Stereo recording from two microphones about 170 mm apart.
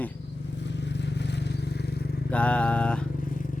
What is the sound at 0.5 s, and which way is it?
Vehicle, 90° left.